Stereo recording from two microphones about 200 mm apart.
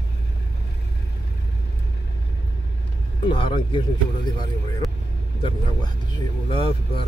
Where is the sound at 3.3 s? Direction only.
25° left (ahead or behind).